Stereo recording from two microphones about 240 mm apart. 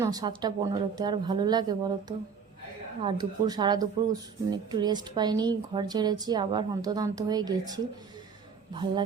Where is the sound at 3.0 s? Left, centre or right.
Centre.